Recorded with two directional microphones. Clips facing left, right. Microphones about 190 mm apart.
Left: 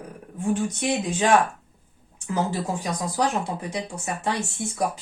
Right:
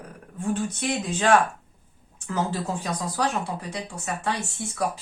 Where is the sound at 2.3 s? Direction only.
15° left (ahead or behind).